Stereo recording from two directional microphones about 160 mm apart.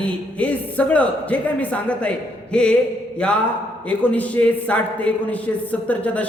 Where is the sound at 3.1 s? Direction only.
5° left (ahead or behind).